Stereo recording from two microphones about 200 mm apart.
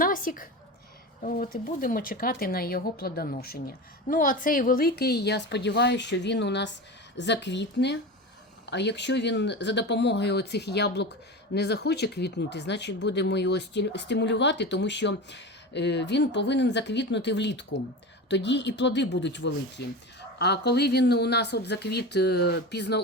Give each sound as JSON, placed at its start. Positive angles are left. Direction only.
{"t": 0.0, "sound": "speech", "side_deg": 45}